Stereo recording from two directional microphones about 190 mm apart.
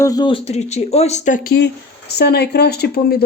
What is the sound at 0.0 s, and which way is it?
Speech, 20° left (ahead or behind).